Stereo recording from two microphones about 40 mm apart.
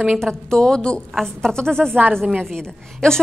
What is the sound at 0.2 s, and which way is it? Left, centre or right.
Speech, centre.